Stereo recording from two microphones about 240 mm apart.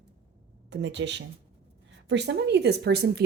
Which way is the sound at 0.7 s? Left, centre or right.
Right.